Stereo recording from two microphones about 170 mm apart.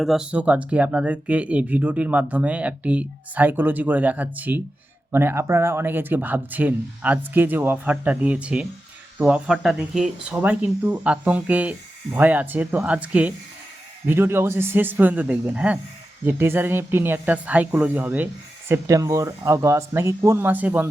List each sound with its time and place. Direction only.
0.0 s speech: centre (ahead or behind)